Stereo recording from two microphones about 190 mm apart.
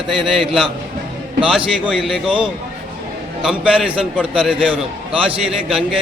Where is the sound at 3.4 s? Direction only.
Centre (ahead or behind).